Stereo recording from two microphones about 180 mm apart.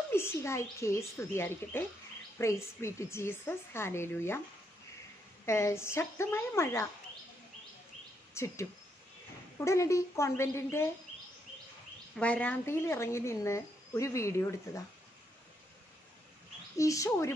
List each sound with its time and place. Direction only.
0.1 s a woman's voice: 15° left (ahead or behind)
5.4 s a woman's voice: 15° left (ahead or behind)
8.4 s speech: 15° left (ahead or behind)
9.6 s a woman's voice: 15° left (ahead or behind)
12.2 s a woman's voice: 5° left (ahead or behind)
16.7 s a woman's voice: 20° left (ahead or behind)